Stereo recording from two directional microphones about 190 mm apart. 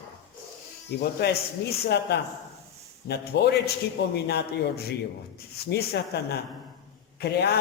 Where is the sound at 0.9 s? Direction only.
55° left (ahead or behind).